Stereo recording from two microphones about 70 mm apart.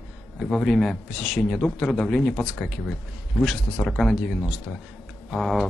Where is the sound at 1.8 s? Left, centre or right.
Centre.